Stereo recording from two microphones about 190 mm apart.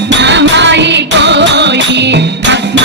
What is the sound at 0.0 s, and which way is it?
Music, 65° right (ahead or behind).